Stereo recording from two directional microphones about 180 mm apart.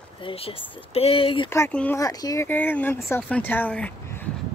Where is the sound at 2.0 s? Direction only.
20° left (ahead or behind).